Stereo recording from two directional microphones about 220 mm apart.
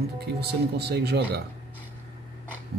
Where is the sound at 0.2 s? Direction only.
45° right (ahead or behind).